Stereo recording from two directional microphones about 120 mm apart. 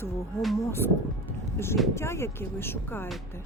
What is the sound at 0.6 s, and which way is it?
Speech, 20° left (ahead or behind).